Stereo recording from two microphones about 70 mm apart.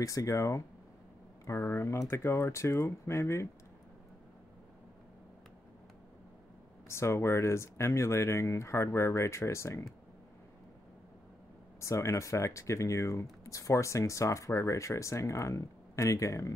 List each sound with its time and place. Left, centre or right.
0.0 s speech: left
1.6 s speech: left
6.9 s speech: left
11.8 s speech: left